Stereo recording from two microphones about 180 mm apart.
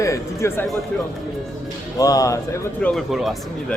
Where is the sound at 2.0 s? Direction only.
20° left (ahead or behind); by 3.4 s centre (ahead or behind).